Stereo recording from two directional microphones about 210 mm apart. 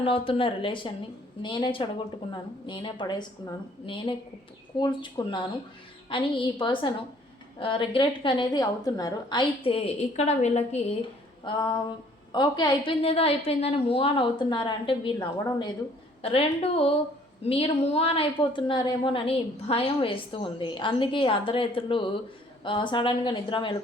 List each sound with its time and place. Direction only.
0.0 s a woman's voice: 25° left (ahead or behind)
11.4 s a woman's voice: 20° left (ahead or behind)